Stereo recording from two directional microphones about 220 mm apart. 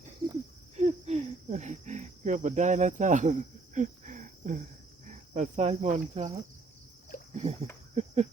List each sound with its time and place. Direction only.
0.8 s cricket: 30° right (ahead or behind)
5.0 s speech: 30° right (ahead or behind)
7.3 s speech: 30° right (ahead or behind)
7.9 s cricket: 30° right (ahead or behind)